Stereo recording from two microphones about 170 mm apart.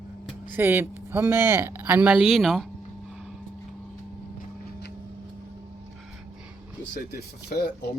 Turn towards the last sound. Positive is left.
turn(degrees=75)  # may be behind; listen again after turning